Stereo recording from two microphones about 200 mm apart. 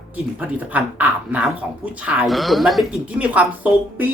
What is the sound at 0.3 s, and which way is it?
Speech, 10° right (ahead or behind).